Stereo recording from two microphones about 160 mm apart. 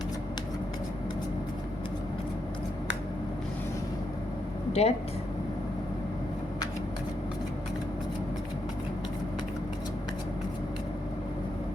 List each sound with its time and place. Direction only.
4.7 s speech: 40° left (ahead or behind)